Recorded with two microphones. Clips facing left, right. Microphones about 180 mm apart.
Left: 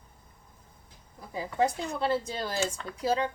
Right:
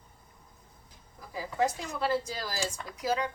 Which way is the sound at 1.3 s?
25° left (ahead or behind).